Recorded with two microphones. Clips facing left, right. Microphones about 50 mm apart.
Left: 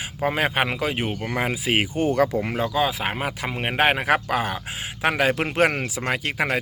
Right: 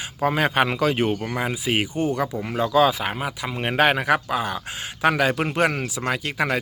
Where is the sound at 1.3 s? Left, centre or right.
Left.